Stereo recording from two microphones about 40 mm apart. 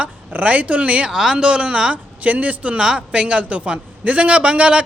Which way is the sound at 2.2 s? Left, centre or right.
Right.